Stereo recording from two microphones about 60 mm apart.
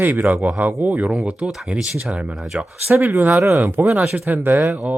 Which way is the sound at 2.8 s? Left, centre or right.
Right.